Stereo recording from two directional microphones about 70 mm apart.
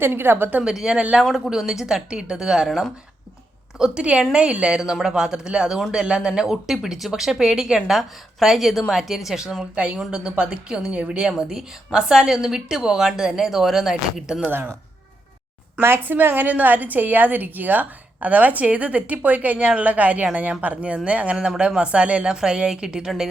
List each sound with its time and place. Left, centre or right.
0.0 s a woman's voice: right
0.6 s a woman's voice: centre
15.8 s a woman's voice: right; by 23.3 s centre